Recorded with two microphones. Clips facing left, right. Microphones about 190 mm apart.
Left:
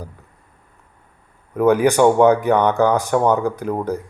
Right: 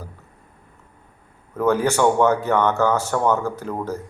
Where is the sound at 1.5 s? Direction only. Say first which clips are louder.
Left 5 dB; 15° left (ahead or behind).